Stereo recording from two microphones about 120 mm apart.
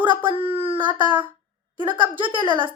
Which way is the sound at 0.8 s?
40° right (ahead or behind).